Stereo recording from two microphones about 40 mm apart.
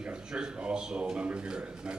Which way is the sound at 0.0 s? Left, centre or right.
Right.